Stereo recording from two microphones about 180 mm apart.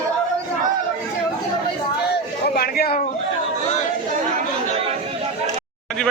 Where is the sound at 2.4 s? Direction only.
60° left (ahead or behind).